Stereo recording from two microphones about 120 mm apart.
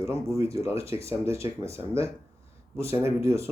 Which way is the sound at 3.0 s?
25° right (ahead or behind).